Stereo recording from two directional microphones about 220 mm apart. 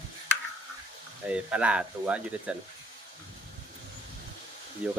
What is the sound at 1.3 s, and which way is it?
Speech, 5° right (ahead or behind).